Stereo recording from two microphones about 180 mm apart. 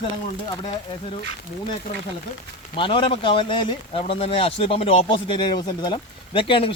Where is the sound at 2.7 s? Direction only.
30° left (ahead or behind).